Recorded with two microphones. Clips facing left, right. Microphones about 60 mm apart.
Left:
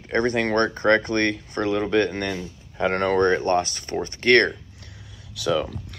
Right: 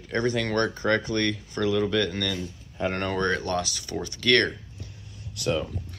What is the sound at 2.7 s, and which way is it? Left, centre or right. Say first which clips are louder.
Speech: left 6 dB; left.